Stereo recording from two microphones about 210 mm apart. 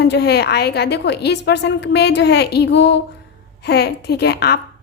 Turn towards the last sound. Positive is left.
turn(degrees=50)  # may be behind; listen again after turning